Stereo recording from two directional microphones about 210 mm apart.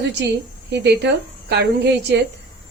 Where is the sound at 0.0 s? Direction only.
55° right (ahead or behind).